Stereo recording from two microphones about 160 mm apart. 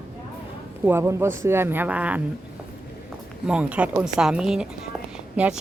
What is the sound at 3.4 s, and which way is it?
A woman's voice, 5° right (ahead or behind).